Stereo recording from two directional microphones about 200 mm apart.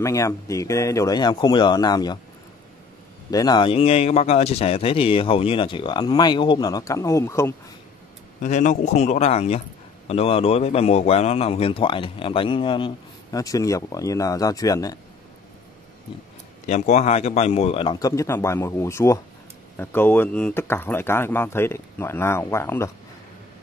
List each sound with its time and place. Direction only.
0.0 s speech: 15° left (ahead or behind)
3.3 s a man's voice: 20° left (ahead or behind)
8.4 s a man's voice: 40° left (ahead or behind); by 15.0 s 15° left (ahead or behind)
16.6 s a man's voice: 35° left (ahead or behind); by 22.8 s 15° left (ahead or behind)